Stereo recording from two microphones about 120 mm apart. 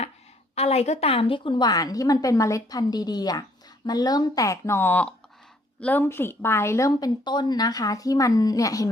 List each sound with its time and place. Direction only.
0.5 s a woman's voice: 60° left (ahead or behind); by 8.9 s 30° left (ahead or behind)